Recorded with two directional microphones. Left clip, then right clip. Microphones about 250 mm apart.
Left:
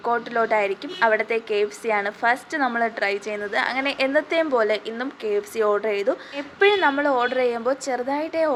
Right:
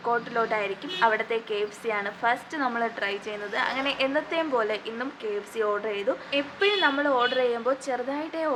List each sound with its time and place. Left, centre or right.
0.0 s a woman's voice: left